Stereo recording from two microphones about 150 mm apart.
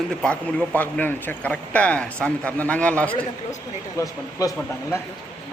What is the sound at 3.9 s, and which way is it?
Speech, 25° left (ahead or behind).